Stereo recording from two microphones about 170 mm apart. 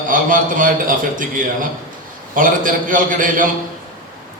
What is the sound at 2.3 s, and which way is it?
A man's voice, 55° right (ahead or behind).